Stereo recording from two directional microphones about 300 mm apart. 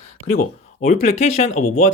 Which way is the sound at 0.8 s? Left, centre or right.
Left.